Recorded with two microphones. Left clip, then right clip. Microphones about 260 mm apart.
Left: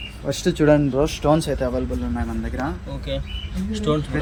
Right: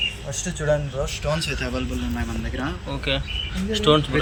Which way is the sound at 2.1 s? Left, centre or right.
Centre.